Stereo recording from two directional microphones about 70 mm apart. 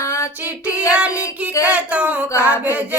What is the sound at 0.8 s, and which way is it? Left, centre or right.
Child singing, centre.